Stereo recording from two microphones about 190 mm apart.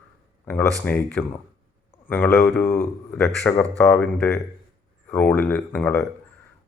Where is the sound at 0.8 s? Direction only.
5° left (ahead or behind).